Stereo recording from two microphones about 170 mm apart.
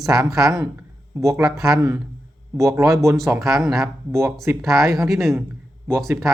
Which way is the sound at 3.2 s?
Centre (ahead or behind).